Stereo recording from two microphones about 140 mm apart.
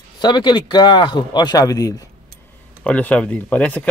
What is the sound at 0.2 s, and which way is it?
Speech, 30° left (ahead or behind).